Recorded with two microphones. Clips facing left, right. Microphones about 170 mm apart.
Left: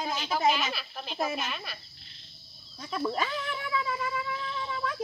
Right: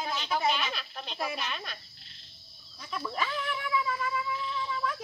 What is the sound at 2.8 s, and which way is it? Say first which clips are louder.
Speech: left 4 dB; 40° left (ahead or behind).